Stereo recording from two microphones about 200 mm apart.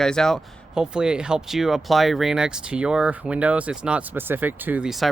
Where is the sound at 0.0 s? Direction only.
5° left (ahead or behind).